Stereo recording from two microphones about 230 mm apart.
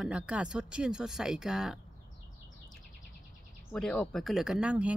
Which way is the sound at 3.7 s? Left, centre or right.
Centre.